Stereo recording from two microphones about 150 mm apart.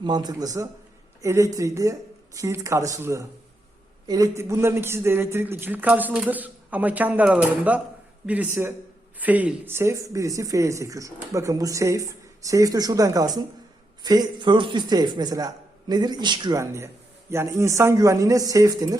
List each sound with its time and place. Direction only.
0.0 s a man's voice: 30° right (ahead or behind)